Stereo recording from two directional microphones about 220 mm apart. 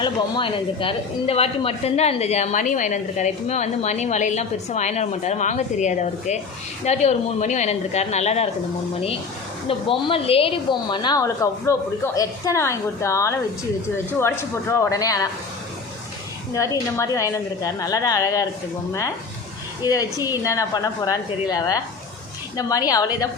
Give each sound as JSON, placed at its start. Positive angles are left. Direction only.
{"t": 0.0, "sound": "speech", "side_deg": 20}
{"t": 9.6, "sound": "a woman's voice", "side_deg": 25}
{"t": 16.6, "sound": "a woman's voice", "side_deg": 15}
{"t": 19.8, "sound": "a woman's voice", "side_deg": 15}
{"t": 22.5, "sound": "a woman's voice", "side_deg": 15}